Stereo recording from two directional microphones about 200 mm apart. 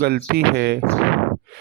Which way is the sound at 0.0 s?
50° right (ahead or behind).